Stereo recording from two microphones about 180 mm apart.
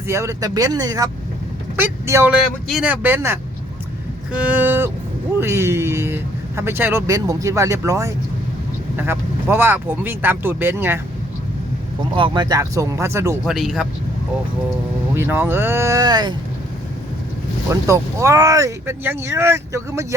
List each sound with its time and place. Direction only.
0.1 s speech: 15° right (ahead or behind)
12.1 s speech: 25° right (ahead or behind)
13.4 s speech: centre (ahead or behind)
15.1 s speech: 15° right (ahead or behind)
17.7 s speech: 15° right (ahead or behind)